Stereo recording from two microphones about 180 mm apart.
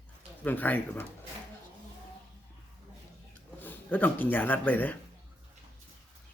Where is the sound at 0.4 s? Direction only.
10° left (ahead or behind).